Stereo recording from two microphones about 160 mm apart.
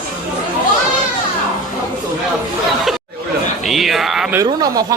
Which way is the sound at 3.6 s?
Centre (ahead or behind).